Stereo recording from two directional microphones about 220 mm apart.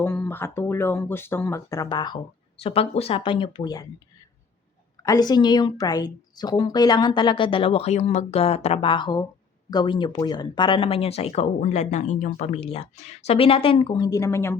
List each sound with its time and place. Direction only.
0.0 s speech: 10° left (ahead or behind)
5.0 s speech: 15° left (ahead or behind)